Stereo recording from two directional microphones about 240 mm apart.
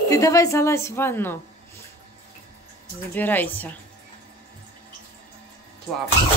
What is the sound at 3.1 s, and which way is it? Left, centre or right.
Speech, centre.